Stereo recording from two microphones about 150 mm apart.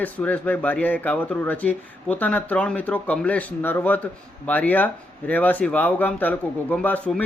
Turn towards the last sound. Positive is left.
turn(degrees=10)  # may be behind; listen again after turning